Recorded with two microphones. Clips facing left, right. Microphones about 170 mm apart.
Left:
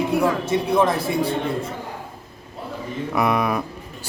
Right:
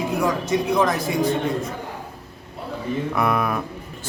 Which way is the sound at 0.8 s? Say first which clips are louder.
Left 1 dB; 30° left (ahead or behind).